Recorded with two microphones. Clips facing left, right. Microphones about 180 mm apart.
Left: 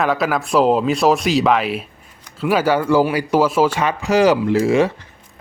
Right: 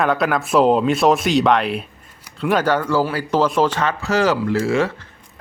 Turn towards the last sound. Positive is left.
turn(degrees=15)  # may be behind; listen again after turning